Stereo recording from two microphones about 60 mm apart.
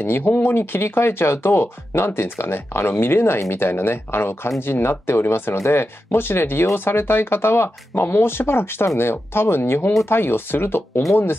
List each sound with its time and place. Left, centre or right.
0.0 s speech: left